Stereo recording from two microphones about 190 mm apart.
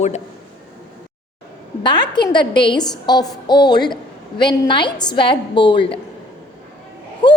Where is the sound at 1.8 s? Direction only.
25° left (ahead or behind).